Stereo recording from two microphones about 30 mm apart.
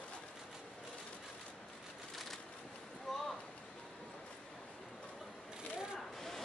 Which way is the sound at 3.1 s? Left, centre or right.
Centre.